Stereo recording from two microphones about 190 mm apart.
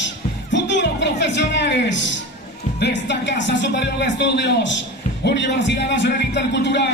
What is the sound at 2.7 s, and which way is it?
Speech, 65° left (ahead or behind).